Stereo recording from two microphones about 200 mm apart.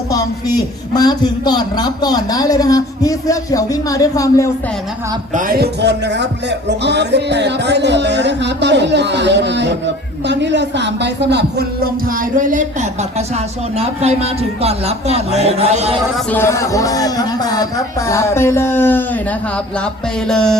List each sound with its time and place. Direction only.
0.1 s a woman's voice: 20° left (ahead or behind)
5.3 s speech: 45° right (ahead or behind)
16.3 s speech: 15° left (ahead or behind)